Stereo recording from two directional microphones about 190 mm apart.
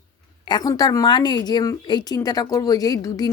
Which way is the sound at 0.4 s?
20° left (ahead or behind).